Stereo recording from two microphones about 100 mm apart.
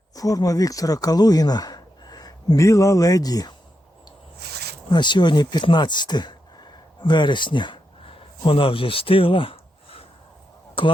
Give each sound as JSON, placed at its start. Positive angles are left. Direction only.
{"t": 0.1, "sound": "speech", "side_deg": 35}
{"t": 2.6, "sound": "speech", "side_deg": 30}
{"t": 4.9, "sound": "speech", "side_deg": 50}